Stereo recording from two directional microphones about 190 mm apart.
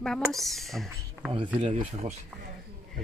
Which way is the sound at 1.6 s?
25° right (ahead or behind).